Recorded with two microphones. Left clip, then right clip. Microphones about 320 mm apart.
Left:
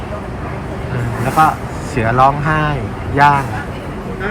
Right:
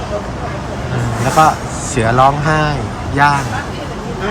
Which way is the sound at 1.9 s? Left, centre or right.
Centre.